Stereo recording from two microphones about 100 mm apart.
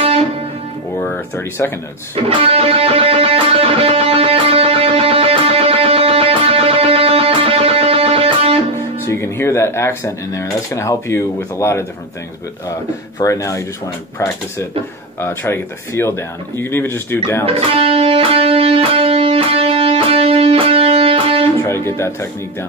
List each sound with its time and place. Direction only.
1.0 s speech: 20° left (ahead or behind)
2.1 s music: 70° right (ahead or behind)
9.0 s speech: 25° left (ahead or behind)
13.2 s speech: 30° left (ahead or behind)
17.5 s music: 75° right (ahead or behind)
21.6 s speech: 25° left (ahead or behind)